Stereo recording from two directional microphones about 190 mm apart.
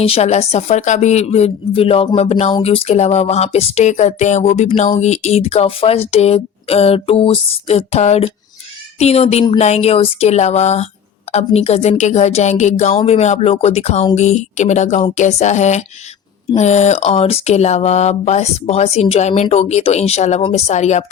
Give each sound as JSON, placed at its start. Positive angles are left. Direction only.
{"t": 0.0, "sound": "speech", "side_deg": 35}